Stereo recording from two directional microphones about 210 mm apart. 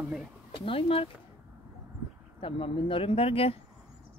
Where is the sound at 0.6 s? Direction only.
25° left (ahead or behind).